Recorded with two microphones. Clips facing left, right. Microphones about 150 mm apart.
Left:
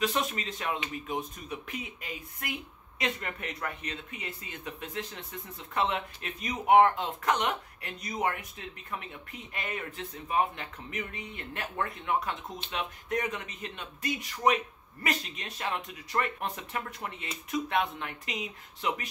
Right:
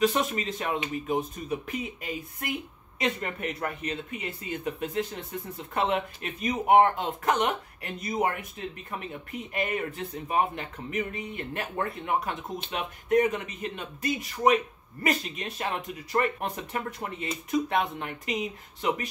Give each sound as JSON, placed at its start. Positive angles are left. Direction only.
{"t": 0.0, "sound": "speech", "side_deg": -45}
{"t": 3.6, "sound": "speech", "side_deg": -50}